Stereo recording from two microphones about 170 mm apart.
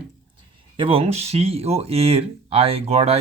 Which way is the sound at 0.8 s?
35° right (ahead or behind).